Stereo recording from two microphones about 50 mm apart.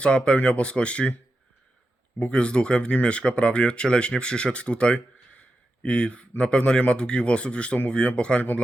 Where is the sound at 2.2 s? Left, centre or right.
Left.